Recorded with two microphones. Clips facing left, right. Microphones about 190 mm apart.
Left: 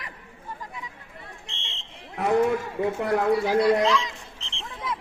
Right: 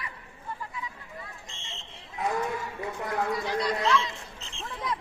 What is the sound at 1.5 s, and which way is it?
Fire alarm, 65° left (ahead or behind).